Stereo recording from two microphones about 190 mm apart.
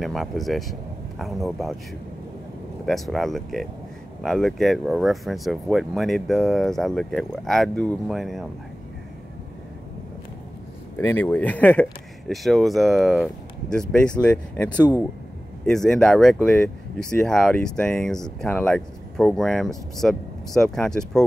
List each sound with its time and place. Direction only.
0.0 s speech: centre (ahead or behind)
2.8 s speech: centre (ahead or behind)
11.0 s speech: 10° left (ahead or behind)